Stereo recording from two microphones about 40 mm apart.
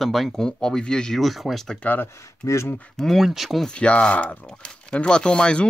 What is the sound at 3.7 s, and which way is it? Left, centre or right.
Speech, left.